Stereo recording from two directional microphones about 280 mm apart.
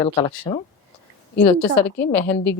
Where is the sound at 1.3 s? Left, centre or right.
Centre.